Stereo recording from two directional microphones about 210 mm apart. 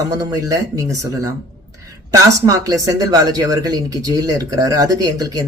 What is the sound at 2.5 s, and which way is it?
Speech, 15° right (ahead or behind).